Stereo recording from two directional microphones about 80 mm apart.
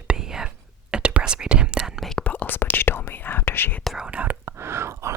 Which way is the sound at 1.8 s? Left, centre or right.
Centre.